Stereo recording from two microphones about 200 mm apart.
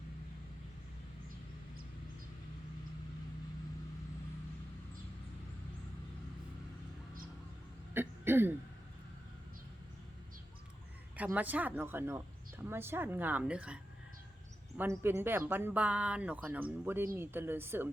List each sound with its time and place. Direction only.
7.9 s cough: 10° right (ahead or behind)
11.2 s a woman's voice: 10° right (ahead or behind)
14.8 s a woman's voice: 10° right (ahead or behind)